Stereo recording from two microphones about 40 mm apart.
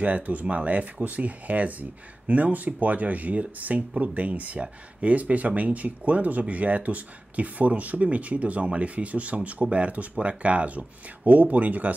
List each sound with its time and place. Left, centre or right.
0.0 s speech: right